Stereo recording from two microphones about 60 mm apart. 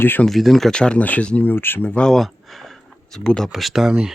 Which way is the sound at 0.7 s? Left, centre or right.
Centre.